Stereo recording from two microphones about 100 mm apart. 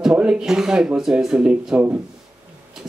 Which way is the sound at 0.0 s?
10° right (ahead or behind).